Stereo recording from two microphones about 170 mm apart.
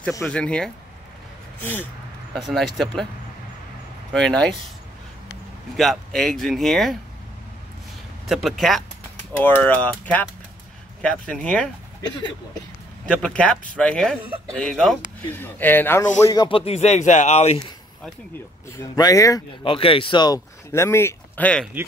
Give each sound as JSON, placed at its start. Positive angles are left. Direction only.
{"t": 0.2, "sound": "speech", "side_deg": 5}
{"t": 2.3, "sound": "speech", "side_deg": 0}
{"t": 4.1, "sound": "speech", "side_deg": 5}
{"t": 5.8, "sound": "speech", "side_deg": 0}
{"t": 8.3, "sound": "speech", "side_deg": 0}
{"t": 13.0, "sound": "speech", "side_deg": 5}
{"t": 16.3, "sound": "speech", "side_deg": 30}
{"t": 18.8, "sound": "speech", "side_deg": 20}
{"t": 19.6, "sound": "speech", "side_deg": 30}
{"t": 20.3, "sound": "speech", "side_deg": 15}